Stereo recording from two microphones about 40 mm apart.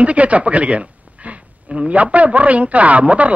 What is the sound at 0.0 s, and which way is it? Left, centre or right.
A woman's voice, right.